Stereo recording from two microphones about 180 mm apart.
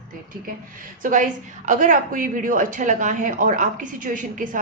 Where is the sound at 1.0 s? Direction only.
45° right (ahead or behind).